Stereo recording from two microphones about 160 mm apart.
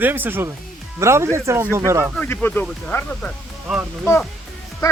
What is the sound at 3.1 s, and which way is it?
Speech, 5° left (ahead or behind).